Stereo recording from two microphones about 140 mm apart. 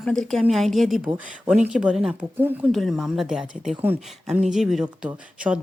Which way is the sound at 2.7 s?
Centre (ahead or behind).